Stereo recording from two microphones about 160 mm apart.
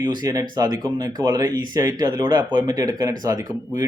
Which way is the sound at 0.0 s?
25° right (ahead or behind).